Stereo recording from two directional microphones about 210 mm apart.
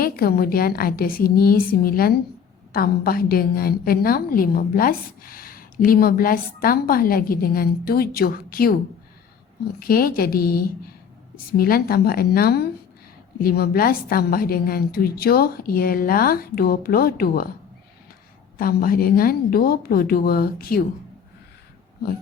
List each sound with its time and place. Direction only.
0.0 s a woman's voice: 45° left (ahead or behind)
9.8 s a woman's voice: 45° left (ahead or behind)
18.5 s a woman's voice: 45° left (ahead or behind)